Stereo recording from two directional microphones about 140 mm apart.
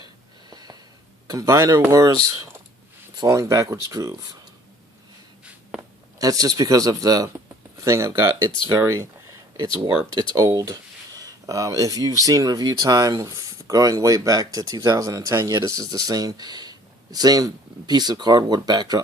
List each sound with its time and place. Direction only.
0.5 s a sound: 30° right (ahead or behind)
1.3 s speech: 25° right (ahead or behind)
3.2 s speech: 20° right (ahead or behind)
6.1 s speech: 25° right (ahead or behind)
8.8 s speech: 20° right (ahead or behind)
10.2 s speech: 25° right (ahead or behind)